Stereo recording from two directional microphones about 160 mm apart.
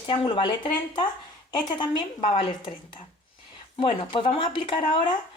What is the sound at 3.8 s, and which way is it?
Speech, 35° left (ahead or behind).